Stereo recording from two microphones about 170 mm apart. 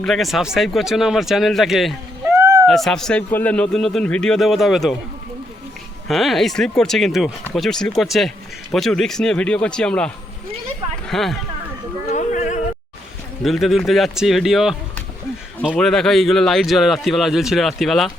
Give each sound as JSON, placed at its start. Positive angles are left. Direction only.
{"t": 0.0, "sound": "speech", "side_deg": 0}
{"t": 2.2, "sound": "a sound", "side_deg": -15}
{"t": 2.6, "sound": "speech", "side_deg": 5}
{"t": 6.1, "sound": "speech", "side_deg": 0}
{"t": 11.1, "sound": "speech", "side_deg": 0}
{"t": 12.1, "sound": "a sound", "side_deg": 50}
{"t": 13.4, "sound": "speech", "side_deg": 0}